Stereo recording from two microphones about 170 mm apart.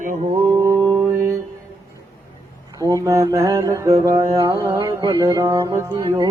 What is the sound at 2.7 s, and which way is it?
Mantra, 20° right (ahead or behind).